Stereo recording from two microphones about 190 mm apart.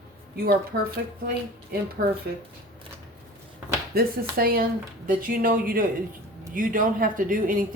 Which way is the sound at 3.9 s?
50° right (ahead or behind).